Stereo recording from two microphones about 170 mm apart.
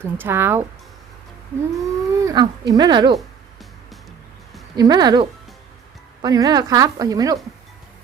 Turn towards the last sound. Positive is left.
turn(degrees=-20)  # may be behind; listen again after turning